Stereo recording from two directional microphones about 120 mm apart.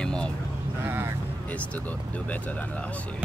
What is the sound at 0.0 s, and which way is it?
Sheep, 10° left (ahead or behind).